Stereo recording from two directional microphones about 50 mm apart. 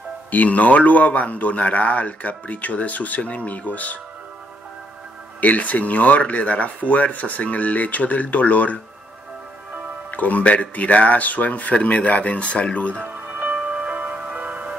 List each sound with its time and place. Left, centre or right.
0.3 s a man's voice: left
5.4 s speech: left
10.1 s speech: left
13.0 s music: right